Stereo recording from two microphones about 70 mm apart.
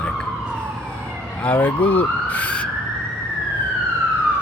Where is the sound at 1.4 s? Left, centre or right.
Left.